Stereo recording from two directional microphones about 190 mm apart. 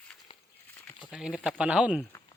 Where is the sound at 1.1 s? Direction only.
5° right (ahead or behind).